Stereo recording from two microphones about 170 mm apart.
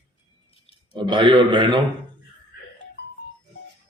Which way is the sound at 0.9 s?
25° right (ahead or behind).